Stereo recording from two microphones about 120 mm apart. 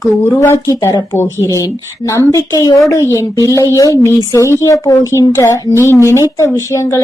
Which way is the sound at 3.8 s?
25° left (ahead or behind).